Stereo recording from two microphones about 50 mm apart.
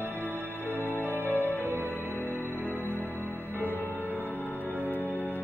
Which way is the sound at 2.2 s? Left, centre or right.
Left.